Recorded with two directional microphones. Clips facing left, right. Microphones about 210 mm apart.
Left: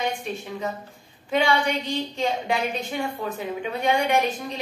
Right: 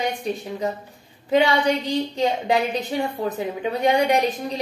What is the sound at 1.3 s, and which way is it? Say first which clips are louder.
A woman's voice: right 4 dB; 35° right (ahead or behind).